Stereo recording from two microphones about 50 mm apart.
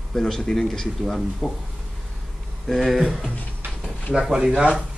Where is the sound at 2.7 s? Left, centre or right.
Centre.